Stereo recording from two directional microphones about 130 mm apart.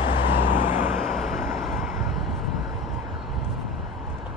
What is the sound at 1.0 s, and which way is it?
Vehicle, centre (ahead or behind).